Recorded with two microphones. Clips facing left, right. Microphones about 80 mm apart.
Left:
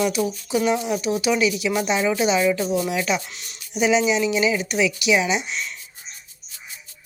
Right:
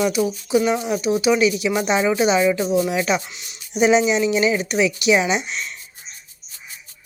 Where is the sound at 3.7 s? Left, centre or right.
Right.